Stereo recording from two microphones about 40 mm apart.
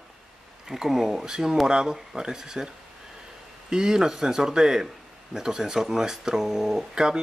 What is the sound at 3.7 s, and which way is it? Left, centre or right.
Speech, centre.